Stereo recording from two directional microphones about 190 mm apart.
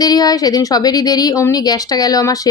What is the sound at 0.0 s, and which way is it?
Speech, 20° left (ahead or behind).